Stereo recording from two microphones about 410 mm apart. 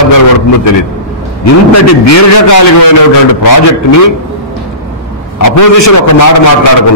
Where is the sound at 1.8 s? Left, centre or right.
Left.